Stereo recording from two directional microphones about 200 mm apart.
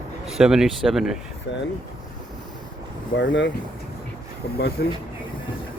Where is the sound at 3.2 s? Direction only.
65° left (ahead or behind).